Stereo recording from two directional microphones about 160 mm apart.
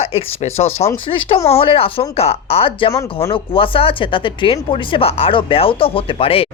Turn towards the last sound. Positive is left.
turn(degrees=35)  # may be behind; listen again after turning